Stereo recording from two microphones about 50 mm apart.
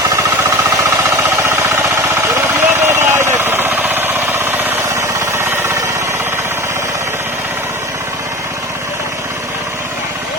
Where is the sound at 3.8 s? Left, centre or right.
Right.